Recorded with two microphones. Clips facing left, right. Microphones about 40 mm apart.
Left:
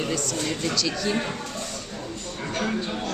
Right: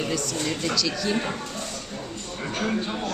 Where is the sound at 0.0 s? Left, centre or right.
Centre.